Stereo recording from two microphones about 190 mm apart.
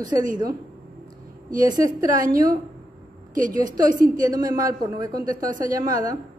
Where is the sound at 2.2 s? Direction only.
50° right (ahead or behind).